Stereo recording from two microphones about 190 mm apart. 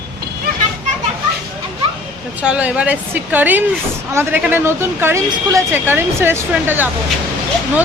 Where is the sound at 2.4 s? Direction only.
5° right (ahead or behind).